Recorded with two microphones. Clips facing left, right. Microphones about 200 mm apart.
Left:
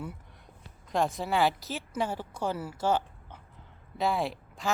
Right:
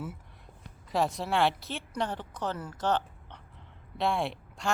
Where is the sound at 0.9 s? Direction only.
Centre (ahead or behind).